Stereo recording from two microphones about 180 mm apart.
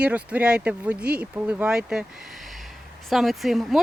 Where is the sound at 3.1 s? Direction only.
Centre (ahead or behind).